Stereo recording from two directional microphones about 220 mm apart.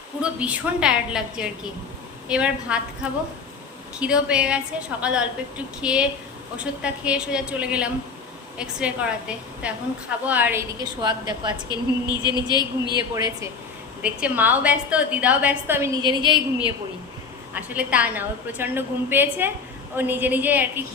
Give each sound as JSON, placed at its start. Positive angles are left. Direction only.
{"t": 0.2, "sound": "a woman's voice", "side_deg": -5}
{"t": 11.7, "sound": "a woman's voice", "side_deg": 20}
{"t": 14.0, "sound": "a woman's voice", "side_deg": -5}
{"t": 17.5, "sound": "a woman's voice", "side_deg": -5}